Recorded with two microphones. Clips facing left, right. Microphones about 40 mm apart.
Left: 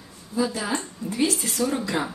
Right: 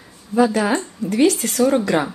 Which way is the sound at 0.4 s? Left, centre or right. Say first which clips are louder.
Right 9 dB; right.